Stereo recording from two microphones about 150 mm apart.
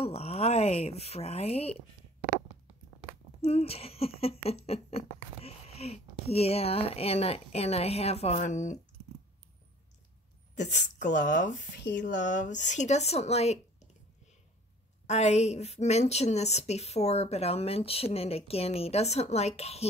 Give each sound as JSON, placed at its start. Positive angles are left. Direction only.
{"t": 0.0, "sound": "speech", "side_deg": 45}
{"t": 3.3, "sound": "speech", "side_deg": 40}
{"t": 10.6, "sound": "speech", "side_deg": 55}
{"t": 15.0, "sound": "speech", "side_deg": 50}